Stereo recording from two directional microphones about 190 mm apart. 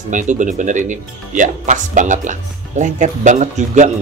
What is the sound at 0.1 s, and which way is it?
Speech, 40° right (ahead or behind).